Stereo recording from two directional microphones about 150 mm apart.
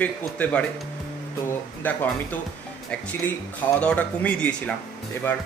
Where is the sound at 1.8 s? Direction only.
10° left (ahead or behind).